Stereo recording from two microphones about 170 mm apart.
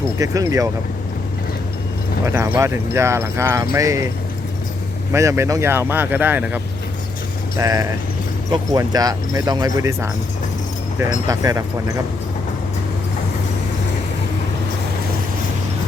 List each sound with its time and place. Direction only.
0.2 s speech: 20° right (ahead or behind)
2.2 s speech: 15° right (ahead or behind)
5.1 s speech: 15° right (ahead or behind)
11.3 s speech: 20° right (ahead or behind)